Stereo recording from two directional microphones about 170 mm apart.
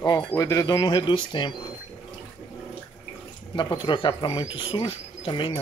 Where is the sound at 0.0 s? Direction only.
25° left (ahead or behind).